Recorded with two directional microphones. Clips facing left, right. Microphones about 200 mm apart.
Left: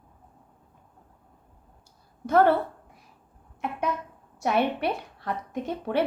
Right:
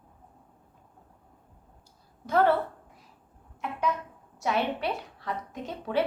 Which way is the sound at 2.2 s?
55° left (ahead or behind).